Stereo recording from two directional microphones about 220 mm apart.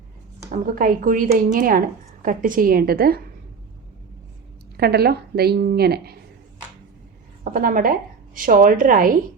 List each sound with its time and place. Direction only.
0.5 s a woman's voice: 40° right (ahead or behind)
4.8 s a woman's voice: 45° right (ahead or behind)
7.5 s a woman's voice: 40° right (ahead or behind)